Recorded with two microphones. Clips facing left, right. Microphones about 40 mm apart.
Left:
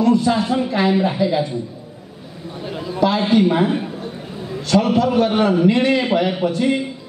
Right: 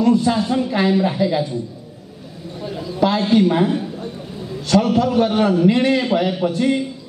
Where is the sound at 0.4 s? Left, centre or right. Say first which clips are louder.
Even; centre.